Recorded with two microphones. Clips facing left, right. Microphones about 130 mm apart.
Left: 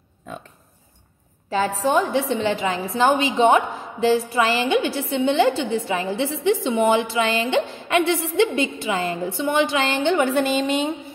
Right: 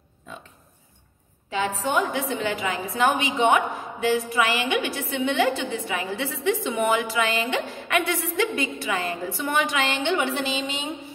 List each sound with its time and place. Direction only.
1.5 s a woman's voice: 35° left (ahead or behind); by 11.0 s 55° left (ahead or behind)